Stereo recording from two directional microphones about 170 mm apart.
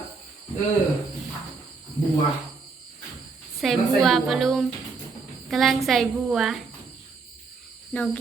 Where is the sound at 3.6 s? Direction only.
Centre (ahead or behind).